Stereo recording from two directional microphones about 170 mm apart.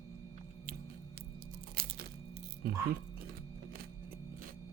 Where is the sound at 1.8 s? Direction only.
60° right (ahead or behind).